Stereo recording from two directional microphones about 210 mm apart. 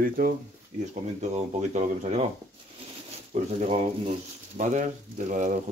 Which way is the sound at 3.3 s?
30° right (ahead or behind).